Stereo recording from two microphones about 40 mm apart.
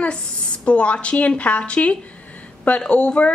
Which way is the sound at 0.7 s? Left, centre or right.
Left.